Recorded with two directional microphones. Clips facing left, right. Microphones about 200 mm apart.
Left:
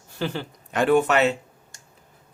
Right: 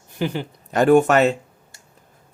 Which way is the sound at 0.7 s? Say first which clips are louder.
Right 5 dB; 45° right (ahead or behind).